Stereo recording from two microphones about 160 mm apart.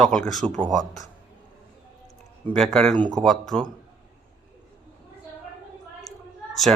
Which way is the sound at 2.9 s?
30° right (ahead or behind).